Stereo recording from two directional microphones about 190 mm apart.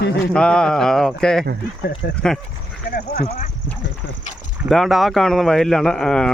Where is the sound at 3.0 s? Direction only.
40° left (ahead or behind).